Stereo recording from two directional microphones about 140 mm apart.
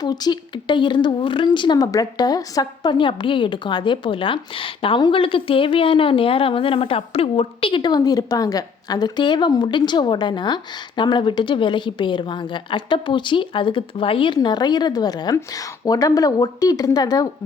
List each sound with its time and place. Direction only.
0.0 s a woman's voice: 30° left (ahead or behind)